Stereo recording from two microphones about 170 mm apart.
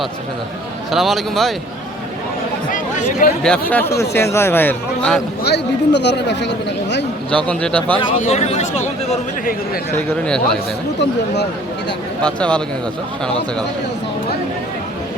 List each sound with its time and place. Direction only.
0.9 s a man's voice: centre (ahead or behind)
2.7 s speech: 55° left (ahead or behind)
3.4 s a man's voice: 5° left (ahead or behind)
5.4 s speech: 80° left
7.4 s a man's voice: 5° left (ahead or behind)
7.9 s speech: 30° left (ahead or behind)
10.2 s a man's voice: 5° left (ahead or behind)
12.2 s a man's voice: 5° left (ahead or behind)